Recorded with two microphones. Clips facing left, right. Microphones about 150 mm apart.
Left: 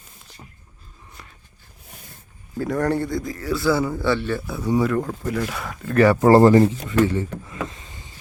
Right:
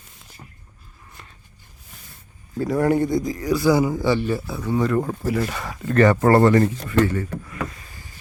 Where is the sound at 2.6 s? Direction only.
5° right (ahead or behind).